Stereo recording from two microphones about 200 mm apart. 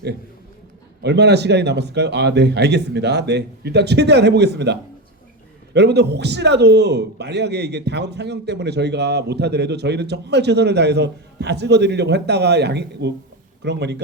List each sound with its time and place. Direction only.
1.0 s a man's voice: 55° right (ahead or behind)